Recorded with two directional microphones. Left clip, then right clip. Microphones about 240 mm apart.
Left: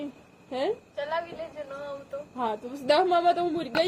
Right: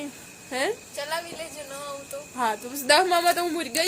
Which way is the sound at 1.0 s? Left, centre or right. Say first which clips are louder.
Even; right.